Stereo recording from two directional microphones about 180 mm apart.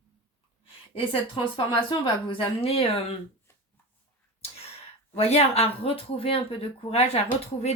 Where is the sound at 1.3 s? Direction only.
30° left (ahead or behind).